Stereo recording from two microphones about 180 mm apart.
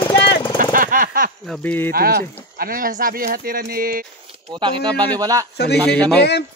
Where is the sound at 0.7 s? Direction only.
50° right (ahead or behind).